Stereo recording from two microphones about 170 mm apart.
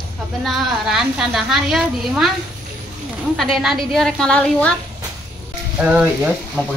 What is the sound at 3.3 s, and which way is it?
Speech, centre (ahead or behind).